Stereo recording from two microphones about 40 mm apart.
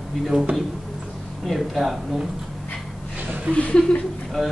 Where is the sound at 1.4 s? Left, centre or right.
Centre.